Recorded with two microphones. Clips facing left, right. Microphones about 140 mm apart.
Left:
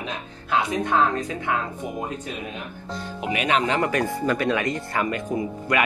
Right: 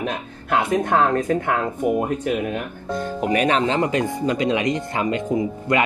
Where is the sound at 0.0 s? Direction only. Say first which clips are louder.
Right 6 dB; 55° right (ahead or behind).